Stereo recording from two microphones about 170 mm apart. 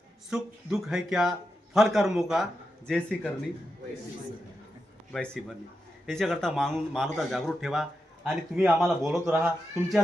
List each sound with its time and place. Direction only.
0.3 s speech: 5° right (ahead or behind)
5.1 s speech: 5° left (ahead or behind)